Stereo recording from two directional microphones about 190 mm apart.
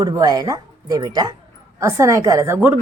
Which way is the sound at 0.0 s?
20° right (ahead or behind).